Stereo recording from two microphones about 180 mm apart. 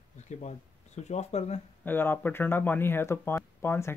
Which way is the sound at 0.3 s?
40° left (ahead or behind).